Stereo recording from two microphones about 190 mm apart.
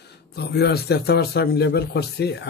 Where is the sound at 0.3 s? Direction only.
55° left (ahead or behind).